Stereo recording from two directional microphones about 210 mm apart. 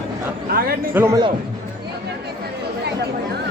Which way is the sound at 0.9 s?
15° right (ahead or behind).